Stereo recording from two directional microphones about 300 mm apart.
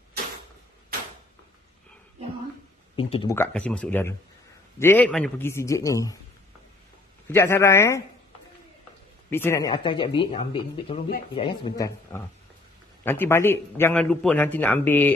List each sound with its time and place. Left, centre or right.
3.0 s a man's voice: centre
7.2 s a man's voice: centre
9.3 s a man's voice: centre